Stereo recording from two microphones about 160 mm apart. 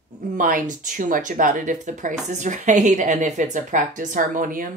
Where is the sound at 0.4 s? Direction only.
55° right (ahead or behind).